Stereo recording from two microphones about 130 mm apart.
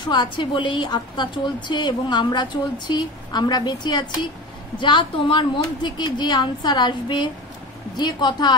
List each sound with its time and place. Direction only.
0.0 s a woman's voice: 35° left (ahead or behind)